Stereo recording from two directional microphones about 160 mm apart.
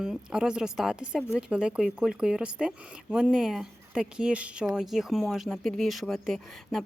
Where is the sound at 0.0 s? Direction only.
5° right (ahead or behind).